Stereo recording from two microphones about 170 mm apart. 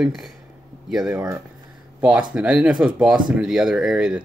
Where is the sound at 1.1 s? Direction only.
15° right (ahead or behind).